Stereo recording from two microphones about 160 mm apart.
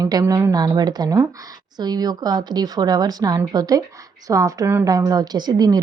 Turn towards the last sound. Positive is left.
turn(degrees=-25)  # may be behind; listen again after turning